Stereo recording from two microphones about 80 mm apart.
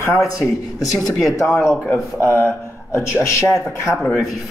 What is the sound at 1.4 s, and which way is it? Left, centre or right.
Speech, left.